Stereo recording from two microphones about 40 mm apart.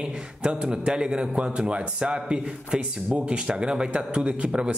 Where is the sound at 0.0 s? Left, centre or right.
Right.